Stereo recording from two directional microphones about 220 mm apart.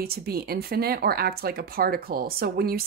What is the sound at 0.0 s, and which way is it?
Speech, 45° right (ahead or behind).